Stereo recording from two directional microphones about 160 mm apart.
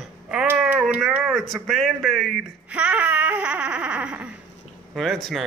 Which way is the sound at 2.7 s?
10° right (ahead or behind).